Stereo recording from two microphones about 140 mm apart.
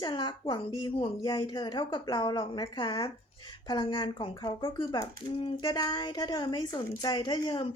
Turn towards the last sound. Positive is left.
turn(degrees=35)  # may be behind; listen again after turning